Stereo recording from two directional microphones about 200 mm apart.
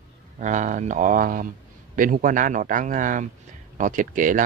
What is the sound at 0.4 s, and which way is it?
Speech, 40° right (ahead or behind).